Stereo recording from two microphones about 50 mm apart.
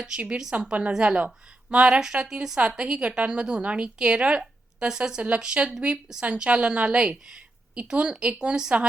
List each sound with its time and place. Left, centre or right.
0.6 s a woman's voice: right
2.6 s a woman's voice: right